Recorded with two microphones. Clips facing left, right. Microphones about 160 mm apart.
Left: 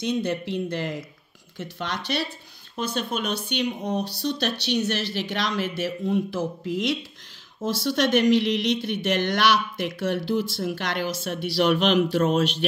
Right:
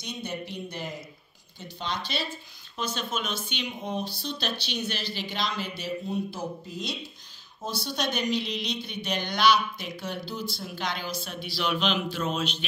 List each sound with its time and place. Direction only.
0.0 s speech: 90° left; by 2.3 s 70° left (ahead or behind)
2.8 s speech: 55° left (ahead or behind)